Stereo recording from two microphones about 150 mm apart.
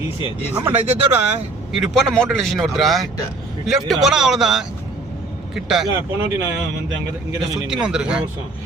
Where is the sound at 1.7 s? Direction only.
Centre (ahead or behind).